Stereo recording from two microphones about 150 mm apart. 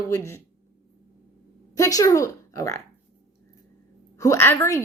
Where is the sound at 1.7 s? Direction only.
20° left (ahead or behind).